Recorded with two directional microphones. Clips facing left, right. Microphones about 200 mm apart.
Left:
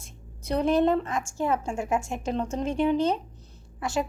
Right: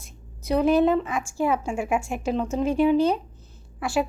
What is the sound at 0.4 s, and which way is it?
Speech, 5° right (ahead or behind).